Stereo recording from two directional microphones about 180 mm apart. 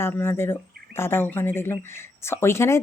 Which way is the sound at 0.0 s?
10° left (ahead or behind).